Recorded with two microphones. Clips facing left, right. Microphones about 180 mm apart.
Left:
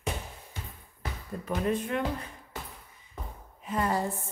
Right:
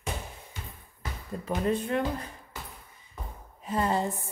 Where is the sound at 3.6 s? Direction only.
30° right (ahead or behind).